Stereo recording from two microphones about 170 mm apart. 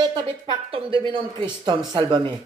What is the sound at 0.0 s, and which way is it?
A woman's voice, 25° right (ahead or behind).